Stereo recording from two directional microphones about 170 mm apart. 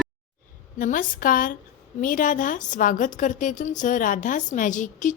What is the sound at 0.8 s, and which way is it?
A woman's voice, 55° left (ahead or behind).